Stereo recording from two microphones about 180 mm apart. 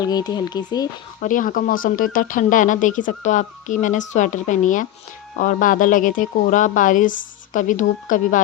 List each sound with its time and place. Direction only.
0.0 s speech: 20° left (ahead or behind)
1.2 s speech: 45° left (ahead or behind)